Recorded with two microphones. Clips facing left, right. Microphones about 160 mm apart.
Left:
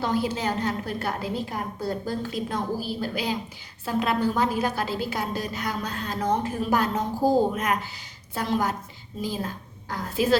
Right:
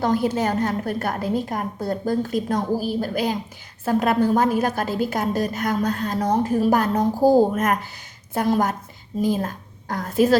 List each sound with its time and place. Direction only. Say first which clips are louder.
0.0 s a woman's voice: right 5 dB; 50° right (ahead or behind)